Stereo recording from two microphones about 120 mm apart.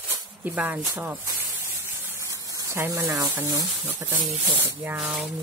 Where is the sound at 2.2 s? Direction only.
25° right (ahead or behind).